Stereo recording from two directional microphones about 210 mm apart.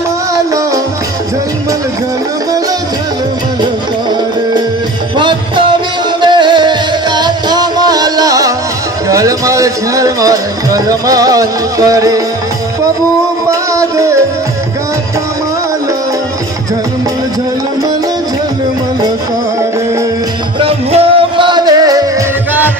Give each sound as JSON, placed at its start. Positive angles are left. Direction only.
{"t": 5.1, "sound": "music", "side_deg": -20}
{"t": 13.5, "sound": "music", "side_deg": -15}
{"t": 20.5, "sound": "music", "side_deg": -25}